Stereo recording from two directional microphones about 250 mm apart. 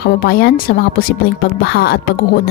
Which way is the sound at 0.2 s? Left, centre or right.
Left.